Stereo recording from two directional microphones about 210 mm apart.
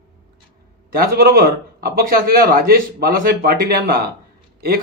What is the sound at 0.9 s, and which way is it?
A man's voice, 45° right (ahead or behind).